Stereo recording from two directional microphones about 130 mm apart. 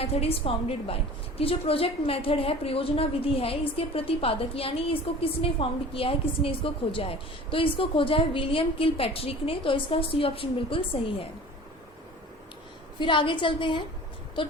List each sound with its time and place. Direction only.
0.0 s a woman's voice: 50° left (ahead or behind)
13.0 s a woman's voice: 40° left (ahead or behind)